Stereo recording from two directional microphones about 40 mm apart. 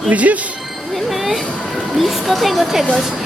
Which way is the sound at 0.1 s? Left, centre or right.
Right.